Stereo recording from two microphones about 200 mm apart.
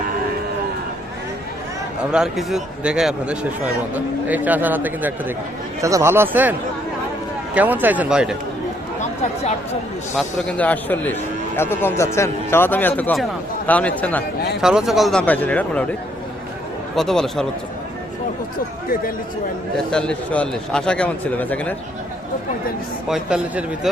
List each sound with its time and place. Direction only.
2.1 s speech: centre (ahead or behind)
9.0 s chatter: 35° left (ahead or behind)
10.2 s a man's voice: 5° left (ahead or behind)
16.9 s speech: centre (ahead or behind)
19.7 s speech: 5° left (ahead or behind)
23.0 s speech: 5° right (ahead or behind)